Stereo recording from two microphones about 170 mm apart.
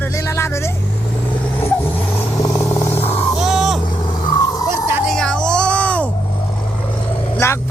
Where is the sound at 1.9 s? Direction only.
15° left (ahead or behind).